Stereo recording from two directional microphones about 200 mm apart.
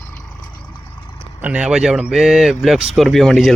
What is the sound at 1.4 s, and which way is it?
Speech, 5° right (ahead or behind).